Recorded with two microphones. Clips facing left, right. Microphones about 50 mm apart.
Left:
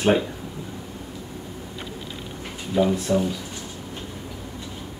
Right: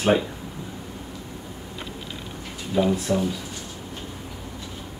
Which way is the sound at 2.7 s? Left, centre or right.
Centre.